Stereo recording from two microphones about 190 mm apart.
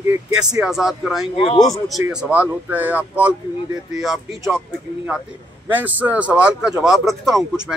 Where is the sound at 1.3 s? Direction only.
25° left (ahead or behind).